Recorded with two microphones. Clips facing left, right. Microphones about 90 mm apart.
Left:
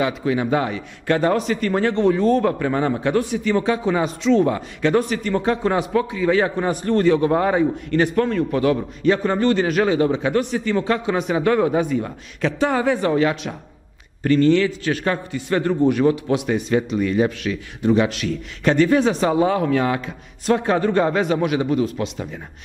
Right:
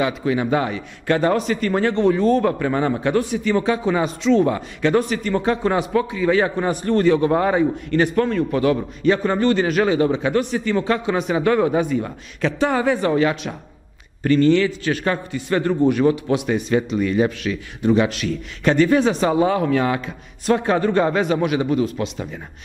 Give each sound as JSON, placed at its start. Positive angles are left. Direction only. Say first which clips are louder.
{"t": 0.0, "sound": "a man's voice", "louder": "even", "side_deg": -15}